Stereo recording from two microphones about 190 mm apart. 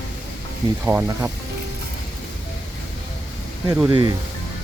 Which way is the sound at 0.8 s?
10° right (ahead or behind).